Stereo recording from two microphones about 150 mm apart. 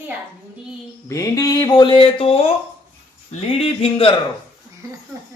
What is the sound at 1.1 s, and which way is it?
Speech, 25° left (ahead or behind).